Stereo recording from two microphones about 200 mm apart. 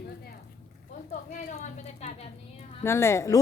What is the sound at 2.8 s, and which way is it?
Speech, 15° left (ahead or behind).